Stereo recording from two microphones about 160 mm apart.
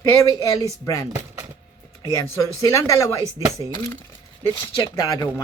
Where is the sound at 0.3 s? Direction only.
20° left (ahead or behind).